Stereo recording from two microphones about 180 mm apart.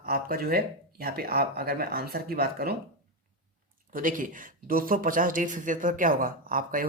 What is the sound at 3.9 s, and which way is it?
Speech, 50° right (ahead or behind).